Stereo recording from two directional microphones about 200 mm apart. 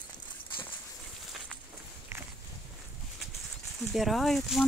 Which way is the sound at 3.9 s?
Centre (ahead or behind).